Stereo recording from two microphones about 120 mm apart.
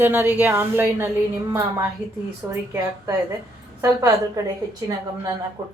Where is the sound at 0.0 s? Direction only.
15° right (ahead or behind).